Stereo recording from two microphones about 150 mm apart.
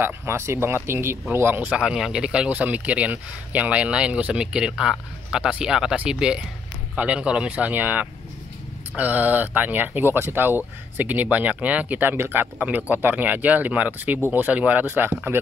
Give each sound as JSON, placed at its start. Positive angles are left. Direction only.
{"t": 0.0, "sound": "speech", "side_deg": -15}